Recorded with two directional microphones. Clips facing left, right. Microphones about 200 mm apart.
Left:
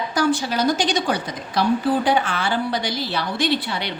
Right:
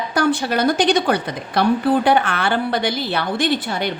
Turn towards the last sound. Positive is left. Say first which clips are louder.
# right 3 dB
turn(degrees=-45)  # may be behind; listen again after turning